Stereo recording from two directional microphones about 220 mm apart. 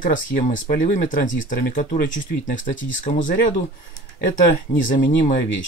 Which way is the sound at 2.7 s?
60° left (ahead or behind).